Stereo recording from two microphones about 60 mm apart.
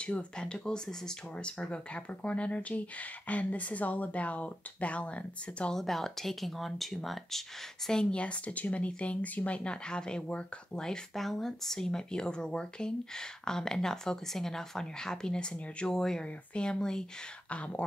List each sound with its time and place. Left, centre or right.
0.0 s speech: centre
5.8 s speech: centre; by 17.8 s left